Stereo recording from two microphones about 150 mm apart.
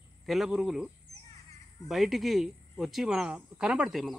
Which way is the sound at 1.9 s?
Centre (ahead or behind).